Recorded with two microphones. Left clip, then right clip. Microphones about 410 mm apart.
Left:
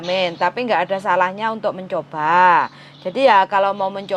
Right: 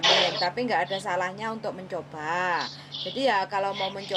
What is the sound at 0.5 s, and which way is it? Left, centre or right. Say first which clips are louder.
A woman's voice: left 7 dB; left.